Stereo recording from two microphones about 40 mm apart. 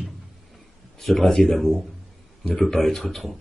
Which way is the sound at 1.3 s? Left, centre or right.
Centre.